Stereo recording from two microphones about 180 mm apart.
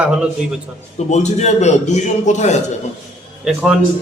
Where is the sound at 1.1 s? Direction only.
40° left (ahead or behind).